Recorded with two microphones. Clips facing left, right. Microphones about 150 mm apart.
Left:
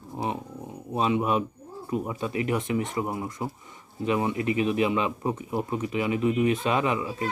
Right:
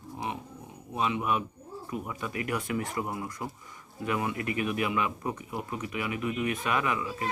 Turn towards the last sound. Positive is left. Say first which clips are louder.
# left 4 dB
turn(degrees=25)  # may be behind; listen again after turning